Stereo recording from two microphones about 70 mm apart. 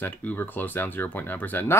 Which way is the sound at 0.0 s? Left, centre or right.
Left.